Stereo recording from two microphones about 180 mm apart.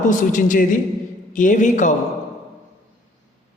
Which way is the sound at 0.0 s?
45° left (ahead or behind).